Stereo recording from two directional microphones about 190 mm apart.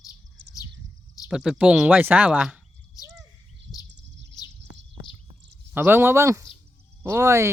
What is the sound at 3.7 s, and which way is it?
Bird, centre (ahead or behind).